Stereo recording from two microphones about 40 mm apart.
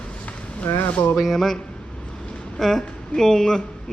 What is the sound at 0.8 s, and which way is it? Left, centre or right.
Speech, left.